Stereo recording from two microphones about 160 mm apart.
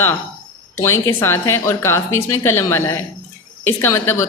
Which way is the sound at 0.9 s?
15° left (ahead or behind).